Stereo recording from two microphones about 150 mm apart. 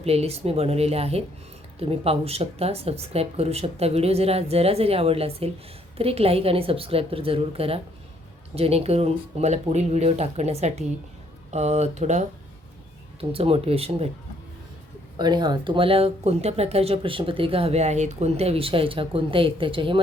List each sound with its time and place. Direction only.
0.0 s speech: 45° right (ahead or behind)
13.3 s speech: 40° right (ahead or behind)
15.2 s speech: 30° right (ahead or behind)